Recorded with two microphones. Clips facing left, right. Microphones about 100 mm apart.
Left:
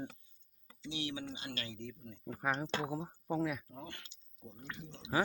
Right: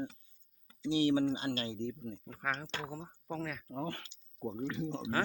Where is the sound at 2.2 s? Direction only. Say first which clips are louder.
Left 3 dB; 15° left (ahead or behind).